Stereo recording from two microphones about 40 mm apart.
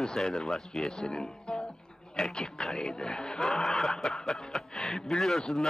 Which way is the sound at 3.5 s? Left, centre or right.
Centre.